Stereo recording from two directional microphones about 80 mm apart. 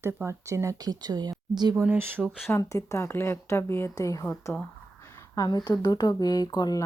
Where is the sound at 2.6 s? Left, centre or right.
Left.